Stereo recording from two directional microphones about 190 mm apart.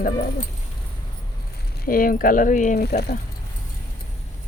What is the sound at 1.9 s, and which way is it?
Speech, 50° left (ahead or behind).